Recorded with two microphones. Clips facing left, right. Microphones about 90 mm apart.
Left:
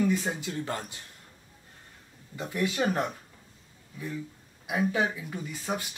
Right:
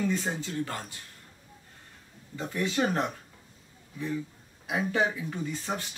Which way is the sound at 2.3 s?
15° left (ahead or behind).